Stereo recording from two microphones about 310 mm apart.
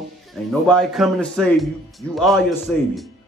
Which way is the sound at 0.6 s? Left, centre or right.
Centre.